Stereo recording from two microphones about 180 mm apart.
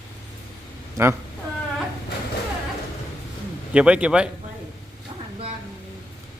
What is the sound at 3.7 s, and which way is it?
Speech, 5° right (ahead or behind).